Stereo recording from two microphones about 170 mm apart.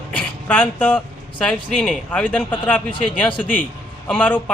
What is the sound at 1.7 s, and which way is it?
Speech, 5° left (ahead or behind).